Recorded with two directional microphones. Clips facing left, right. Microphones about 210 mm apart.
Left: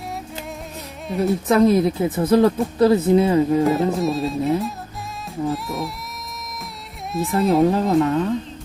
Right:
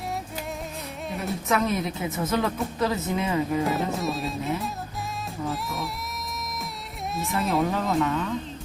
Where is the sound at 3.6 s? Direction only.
Centre (ahead or behind).